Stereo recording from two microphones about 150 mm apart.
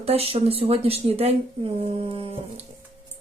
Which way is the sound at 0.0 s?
40° right (ahead or behind).